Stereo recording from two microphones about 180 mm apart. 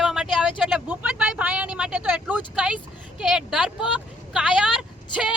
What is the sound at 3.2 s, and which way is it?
Speech, centre (ahead or behind).